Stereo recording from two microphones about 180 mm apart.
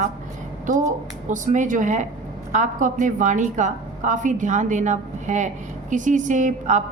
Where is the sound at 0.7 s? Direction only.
45° right (ahead or behind).